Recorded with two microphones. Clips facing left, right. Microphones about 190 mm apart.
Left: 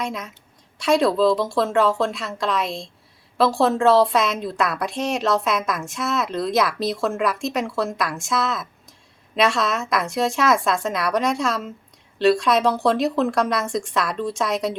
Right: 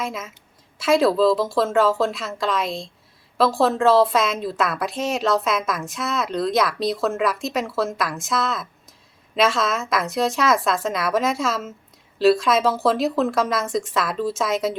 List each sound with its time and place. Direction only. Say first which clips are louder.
0.0 s a woman's voice: left 1 dB; 5° right (ahead or behind)